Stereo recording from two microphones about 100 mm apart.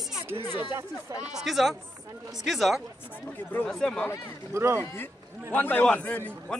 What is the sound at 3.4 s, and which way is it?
Speech, 20° left (ahead or behind).